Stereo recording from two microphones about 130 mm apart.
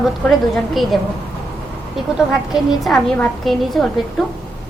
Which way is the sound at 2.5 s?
Centre (ahead or behind).